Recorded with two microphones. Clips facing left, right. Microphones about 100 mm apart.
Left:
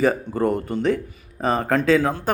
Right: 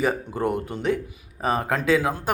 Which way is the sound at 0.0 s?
15° right (ahead or behind).